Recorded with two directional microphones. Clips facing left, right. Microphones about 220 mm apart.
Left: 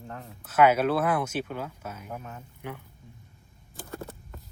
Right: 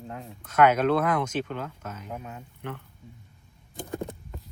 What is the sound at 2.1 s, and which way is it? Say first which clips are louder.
Speech: right 2 dB; 15° right (ahead or behind).